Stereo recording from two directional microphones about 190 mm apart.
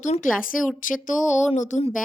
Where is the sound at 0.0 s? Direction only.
40° left (ahead or behind).